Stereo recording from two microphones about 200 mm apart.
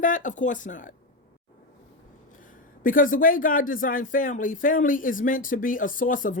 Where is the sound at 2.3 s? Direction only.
40° left (ahead or behind).